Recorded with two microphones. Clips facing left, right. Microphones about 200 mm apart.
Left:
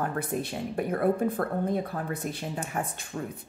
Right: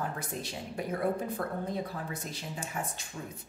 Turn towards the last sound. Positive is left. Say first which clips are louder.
# left 7 dB
turn(degrees=55)  # may be behind; listen again after turning